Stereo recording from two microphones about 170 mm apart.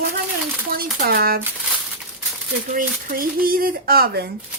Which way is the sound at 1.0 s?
65° right (ahead or behind).